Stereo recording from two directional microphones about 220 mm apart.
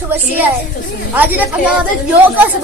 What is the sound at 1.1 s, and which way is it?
Speech, 5° right (ahead or behind).